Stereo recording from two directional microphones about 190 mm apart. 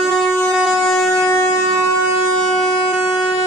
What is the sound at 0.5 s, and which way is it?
Train, 5° right (ahead or behind).